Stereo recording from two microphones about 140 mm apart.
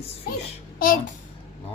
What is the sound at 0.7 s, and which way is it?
Speech, 90° left.